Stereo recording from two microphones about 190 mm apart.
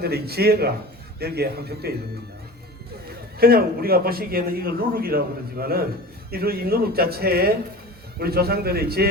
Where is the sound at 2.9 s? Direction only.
55° right (ahead or behind).